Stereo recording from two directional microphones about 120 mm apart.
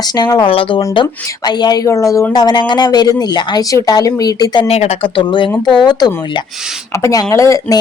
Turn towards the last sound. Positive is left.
turn(degrees=25)  # may be behind; listen again after turning